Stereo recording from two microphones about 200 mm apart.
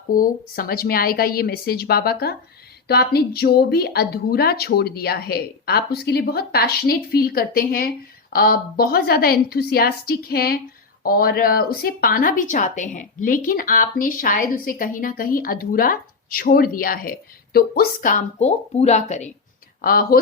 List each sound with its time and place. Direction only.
0.1 s speech: 45° left (ahead or behind)
19.8 s speech: 45° left (ahead or behind)